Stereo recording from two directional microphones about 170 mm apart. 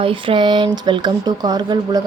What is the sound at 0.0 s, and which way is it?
Speech, 30° right (ahead or behind).